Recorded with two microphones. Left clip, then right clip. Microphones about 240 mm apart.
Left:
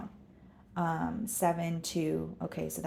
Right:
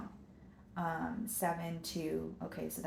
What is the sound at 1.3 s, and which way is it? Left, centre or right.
Speech, left.